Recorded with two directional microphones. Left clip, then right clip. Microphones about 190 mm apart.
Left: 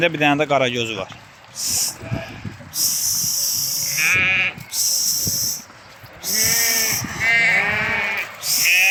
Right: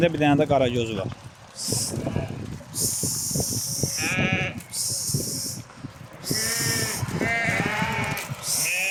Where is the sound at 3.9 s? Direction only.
30° right (ahead or behind).